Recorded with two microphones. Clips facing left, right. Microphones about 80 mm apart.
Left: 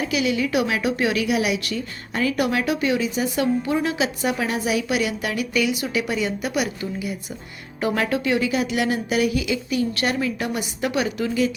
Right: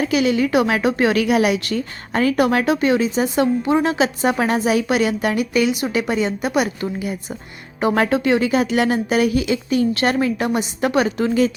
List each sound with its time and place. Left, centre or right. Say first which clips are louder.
0.1 s a woman's voice: right 4 dB; right
7.8 s speech: right 5 dB; right
8.2 s a woman's voice: right 5 dB; right